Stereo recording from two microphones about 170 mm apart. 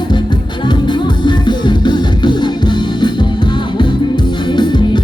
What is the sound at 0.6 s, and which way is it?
Music, 25° left (ahead or behind).